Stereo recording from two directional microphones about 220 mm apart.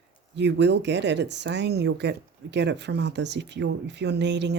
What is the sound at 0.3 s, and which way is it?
Speech, 50° right (ahead or behind).